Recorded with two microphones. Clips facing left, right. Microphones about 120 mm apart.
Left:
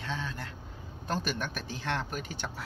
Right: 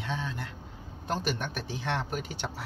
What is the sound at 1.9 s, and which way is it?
Speech, 15° right (ahead or behind).